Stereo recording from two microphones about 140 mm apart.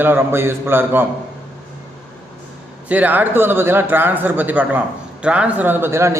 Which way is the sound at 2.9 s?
10° right (ahead or behind).